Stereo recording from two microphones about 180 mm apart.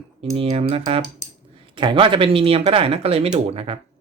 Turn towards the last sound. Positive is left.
turn(degrees=-35)  # may be behind; listen again after turning